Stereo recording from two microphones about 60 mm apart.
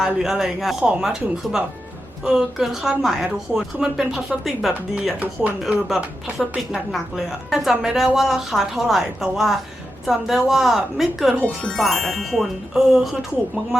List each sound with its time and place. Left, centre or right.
0.0 s a woman's voice: centre
5.2 s speech: right
6.7 s a woman's voice: centre